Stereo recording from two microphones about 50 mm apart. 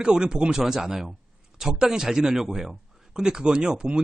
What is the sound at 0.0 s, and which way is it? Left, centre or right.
Speech, centre.